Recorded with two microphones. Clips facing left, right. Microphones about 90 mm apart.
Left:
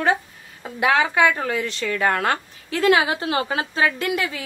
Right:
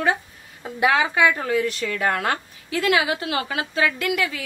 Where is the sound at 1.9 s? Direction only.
40° left (ahead or behind).